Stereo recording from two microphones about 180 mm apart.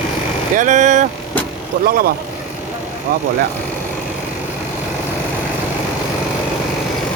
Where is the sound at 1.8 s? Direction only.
55° right (ahead or behind).